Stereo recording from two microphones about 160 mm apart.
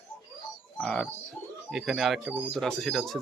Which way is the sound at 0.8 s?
5° left (ahead or behind).